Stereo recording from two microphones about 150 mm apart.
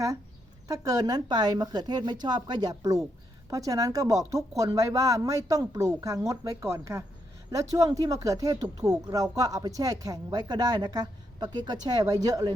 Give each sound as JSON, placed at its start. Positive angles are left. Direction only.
{"t": 0.7, "sound": "speech", "side_deg": -25}